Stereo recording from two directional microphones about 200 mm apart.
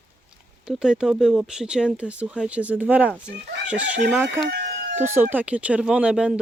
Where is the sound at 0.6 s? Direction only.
5° right (ahead or behind).